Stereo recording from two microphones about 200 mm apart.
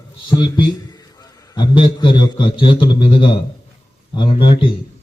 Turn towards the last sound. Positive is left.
turn(degrees=25)  # may be behind; listen again after turning